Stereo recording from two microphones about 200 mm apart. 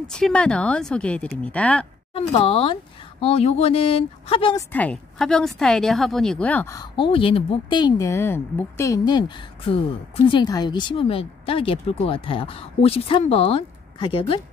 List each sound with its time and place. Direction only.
0.0 s speech: 5° left (ahead or behind)
2.1 s a woman's voice: 30° left (ahead or behind)
4.7 s a woman's voice: 5° left (ahead or behind); by 14.4 s 25° left (ahead or behind)